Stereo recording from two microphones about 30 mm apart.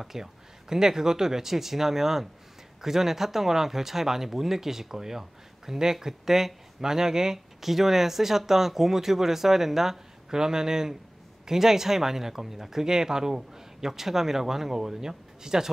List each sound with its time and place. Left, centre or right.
0.0 s speech: centre